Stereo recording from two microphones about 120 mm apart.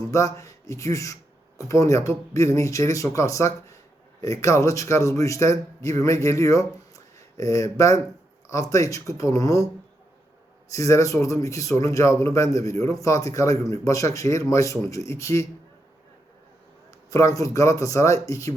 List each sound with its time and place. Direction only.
0.1 s a man's voice: 25° left (ahead or behind)
10.7 s a man's voice: 25° left (ahead or behind)
17.1 s a man's voice: 25° left (ahead or behind)